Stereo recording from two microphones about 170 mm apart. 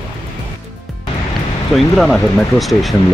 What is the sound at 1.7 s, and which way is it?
Speech, centre (ahead or behind).